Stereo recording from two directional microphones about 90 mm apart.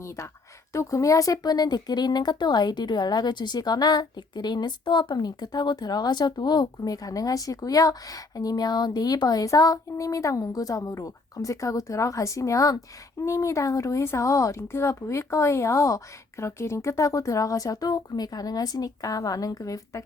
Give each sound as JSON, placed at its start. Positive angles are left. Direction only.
{"t": 0.7, "sound": "speech", "side_deg": 35}